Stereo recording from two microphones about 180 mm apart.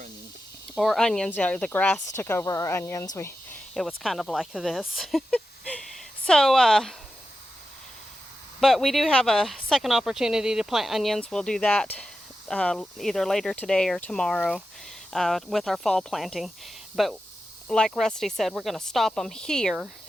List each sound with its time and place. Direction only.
0.8 s speech: centre (ahead or behind)
4.0 s speech: centre (ahead or behind)
8.6 s speech: centre (ahead or behind)